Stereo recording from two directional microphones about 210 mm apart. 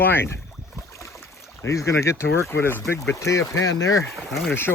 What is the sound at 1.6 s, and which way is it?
Speech, 15° left (ahead or behind).